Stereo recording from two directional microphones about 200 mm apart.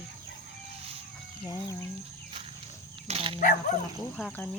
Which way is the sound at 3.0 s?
30° right (ahead or behind).